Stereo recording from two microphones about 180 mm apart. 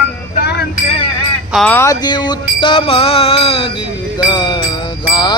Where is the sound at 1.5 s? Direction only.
10° left (ahead or behind).